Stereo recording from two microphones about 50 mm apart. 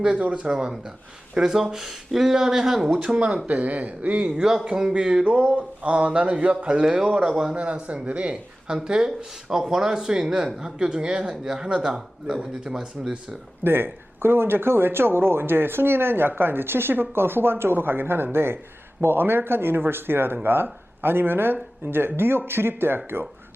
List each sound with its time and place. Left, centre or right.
0.0 s speech: right; by 3.2 s centre
3.2 s speech: right
6.8 s speech: centre
13.7 s speech: right